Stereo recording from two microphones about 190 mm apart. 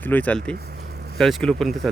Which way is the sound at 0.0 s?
10° left (ahead or behind).